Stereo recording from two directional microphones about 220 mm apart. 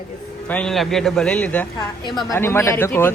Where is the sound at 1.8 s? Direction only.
20° left (ahead or behind).